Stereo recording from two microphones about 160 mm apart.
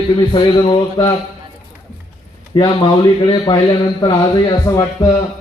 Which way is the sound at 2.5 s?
30° left (ahead or behind).